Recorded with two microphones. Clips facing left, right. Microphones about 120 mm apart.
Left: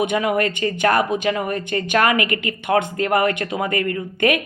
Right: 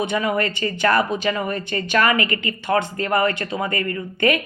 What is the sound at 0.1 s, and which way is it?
Speech, 55° left (ahead or behind).